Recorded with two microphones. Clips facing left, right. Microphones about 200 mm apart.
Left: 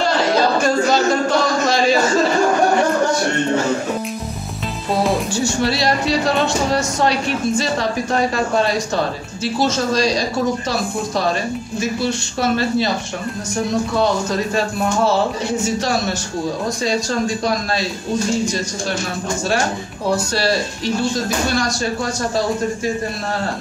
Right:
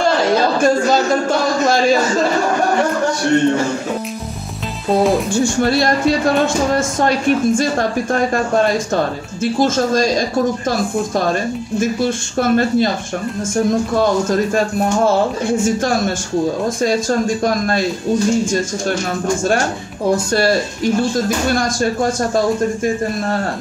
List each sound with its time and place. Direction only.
5.3 s speech: 50° right (ahead or behind)
9.4 s speech: 50° right (ahead or behind)
11.8 s speech: 50° right (ahead or behind)
15.0 s speech: 50° right (ahead or behind)
20.3 s speech: 50° right (ahead or behind)